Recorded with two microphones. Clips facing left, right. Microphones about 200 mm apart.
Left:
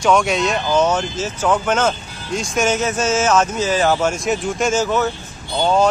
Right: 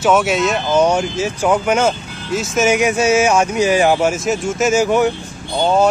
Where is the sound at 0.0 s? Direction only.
5° right (ahead or behind).